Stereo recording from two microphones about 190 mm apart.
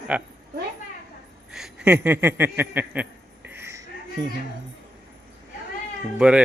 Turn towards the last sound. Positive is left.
turn(degrees=-5)  # may be behind; listen again after turning